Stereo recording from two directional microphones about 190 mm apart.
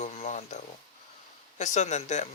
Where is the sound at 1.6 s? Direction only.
40° left (ahead or behind).